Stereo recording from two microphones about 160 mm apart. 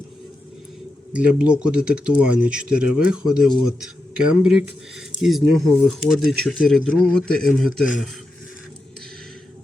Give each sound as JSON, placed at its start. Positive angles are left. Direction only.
{"t": 1.1, "sound": "speech", "side_deg": -5}